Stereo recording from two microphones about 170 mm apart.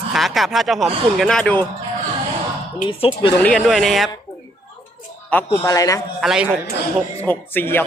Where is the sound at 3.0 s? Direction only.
30° left (ahead or behind).